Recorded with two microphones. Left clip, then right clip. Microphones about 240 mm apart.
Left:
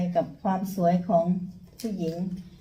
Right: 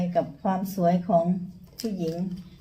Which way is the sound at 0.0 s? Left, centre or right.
Centre.